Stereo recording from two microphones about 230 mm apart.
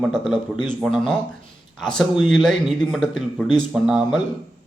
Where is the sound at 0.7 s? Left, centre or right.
Centre.